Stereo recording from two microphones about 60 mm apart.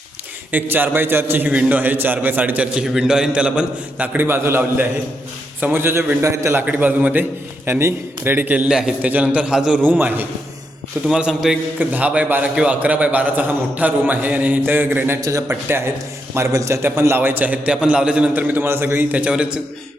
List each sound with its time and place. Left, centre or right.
0.5 s a man's voice: right
2.8 s a man's voice: centre; by 4.3 s right
4.3 s a man's voice: right
6.6 s a man's voice: right
9.8 s a man's voice: right
11.0 s a man's voice: centre
11.8 s a man's voice: right
15.2 s a man's voice: right
15.4 s a man's voice: right
16.3 s a man's voice: right
17.2 s a man's voice: right
17.7 s a man's voice: centre; by 19.0 s right
19.1 s a man's voice: centre